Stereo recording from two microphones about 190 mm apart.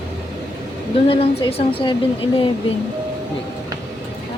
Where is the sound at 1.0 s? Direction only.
30° left (ahead or behind).